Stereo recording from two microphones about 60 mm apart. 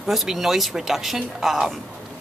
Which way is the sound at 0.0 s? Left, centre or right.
Centre.